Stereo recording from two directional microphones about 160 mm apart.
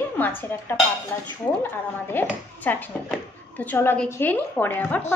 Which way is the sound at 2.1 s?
15° left (ahead or behind).